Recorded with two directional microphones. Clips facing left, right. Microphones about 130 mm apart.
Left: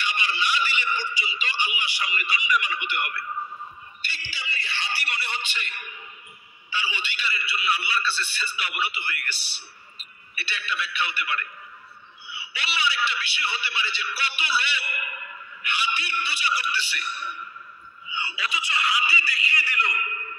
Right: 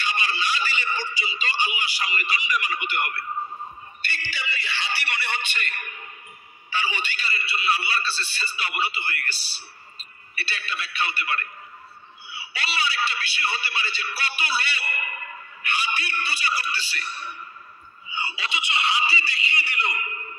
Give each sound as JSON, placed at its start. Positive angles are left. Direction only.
{"t": 0.1, "sound": "a man's voice", "side_deg": -40}
{"t": 4.1, "sound": "a man's voice", "side_deg": -55}